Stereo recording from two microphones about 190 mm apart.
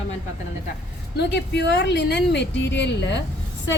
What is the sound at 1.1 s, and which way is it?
A woman's voice, 65° left (ahead or behind).